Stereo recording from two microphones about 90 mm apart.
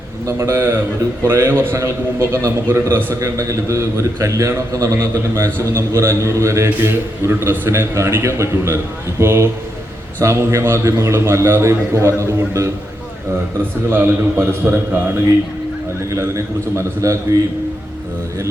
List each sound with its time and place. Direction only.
0.3 s a man's voice: 30° right (ahead or behind)
13.9 s a man's voice: 25° right (ahead or behind)